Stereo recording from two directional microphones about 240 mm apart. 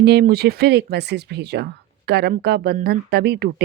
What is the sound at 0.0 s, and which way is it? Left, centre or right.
A woman's voice, right.